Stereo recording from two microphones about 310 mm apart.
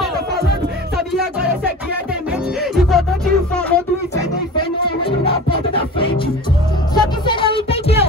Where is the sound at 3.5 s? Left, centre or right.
Centre.